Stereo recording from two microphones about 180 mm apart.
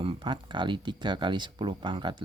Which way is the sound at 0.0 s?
30° right (ahead or behind).